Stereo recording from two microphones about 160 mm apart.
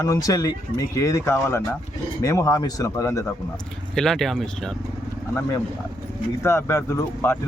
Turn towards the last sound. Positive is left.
turn(degrees=15)  # may be behind; listen again after turning